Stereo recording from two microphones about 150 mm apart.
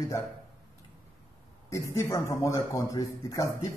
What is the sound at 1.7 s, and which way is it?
Speech, 20° left (ahead or behind).